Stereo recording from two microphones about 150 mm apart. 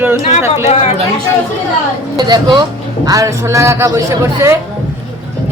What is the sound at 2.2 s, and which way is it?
A woman's voice, 30° right (ahead or behind).